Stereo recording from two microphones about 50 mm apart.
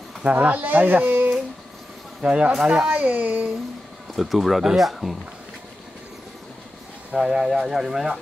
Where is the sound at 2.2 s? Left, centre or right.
Right.